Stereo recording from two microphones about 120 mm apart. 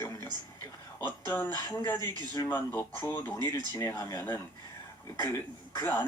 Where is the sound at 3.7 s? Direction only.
30° left (ahead or behind).